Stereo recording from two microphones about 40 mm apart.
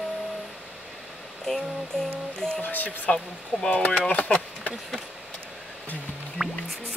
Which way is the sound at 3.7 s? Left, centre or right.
Left.